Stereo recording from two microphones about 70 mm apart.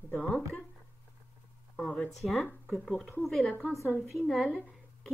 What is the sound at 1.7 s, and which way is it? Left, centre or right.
Speech, centre.